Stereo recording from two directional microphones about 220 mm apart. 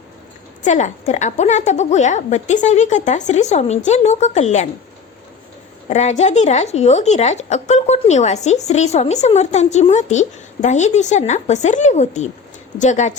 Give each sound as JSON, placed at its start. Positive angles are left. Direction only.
{"t": 0.6, "sound": "speech", "side_deg": 35}
{"t": 5.9, "sound": "speech", "side_deg": 30}